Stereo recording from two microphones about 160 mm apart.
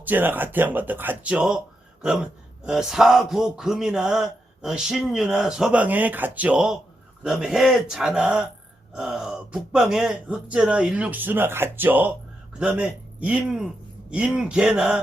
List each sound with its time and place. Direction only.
0.0 s speech: 10° right (ahead or behind)